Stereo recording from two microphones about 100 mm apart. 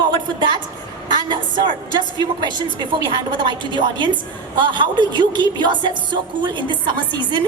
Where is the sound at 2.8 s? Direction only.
50° right (ahead or behind).